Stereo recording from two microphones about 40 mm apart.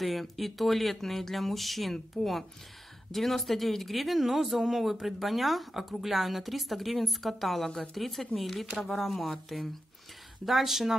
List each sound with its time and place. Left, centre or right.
0.0 s speech: centre